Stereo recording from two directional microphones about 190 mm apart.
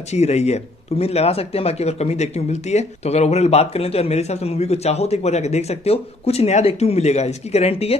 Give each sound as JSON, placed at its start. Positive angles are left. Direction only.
{"t": 0.1, "sound": "speech", "side_deg": 35}